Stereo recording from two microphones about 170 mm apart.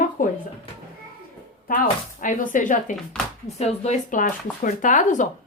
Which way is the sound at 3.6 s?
40° left (ahead or behind).